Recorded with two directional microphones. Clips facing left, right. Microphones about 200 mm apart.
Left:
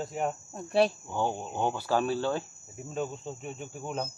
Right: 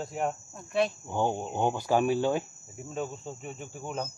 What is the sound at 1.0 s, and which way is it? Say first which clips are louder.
Speech: right 2 dB; 15° right (ahead or behind).